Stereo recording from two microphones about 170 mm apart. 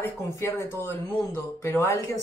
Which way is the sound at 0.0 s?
15° left (ahead or behind).